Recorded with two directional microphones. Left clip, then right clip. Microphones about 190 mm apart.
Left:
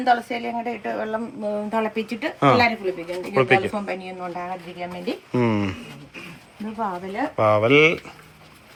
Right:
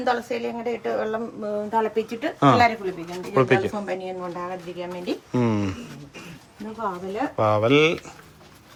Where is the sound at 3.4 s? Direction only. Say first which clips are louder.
Left 2 dB; 15° right (ahead or behind).